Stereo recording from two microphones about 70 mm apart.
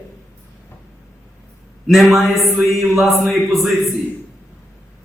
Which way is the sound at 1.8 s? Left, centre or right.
Centre.